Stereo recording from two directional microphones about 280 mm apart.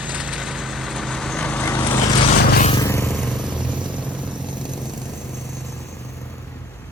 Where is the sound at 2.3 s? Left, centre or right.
Left.